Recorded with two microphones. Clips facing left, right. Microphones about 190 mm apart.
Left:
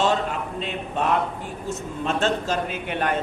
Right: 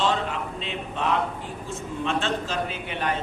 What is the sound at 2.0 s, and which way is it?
A woman's voice, 45° left (ahead or behind).